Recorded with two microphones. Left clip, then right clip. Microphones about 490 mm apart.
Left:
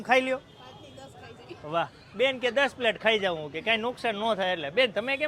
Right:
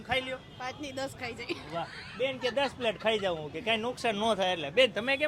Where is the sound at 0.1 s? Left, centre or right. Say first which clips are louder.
Left 8 dB; left.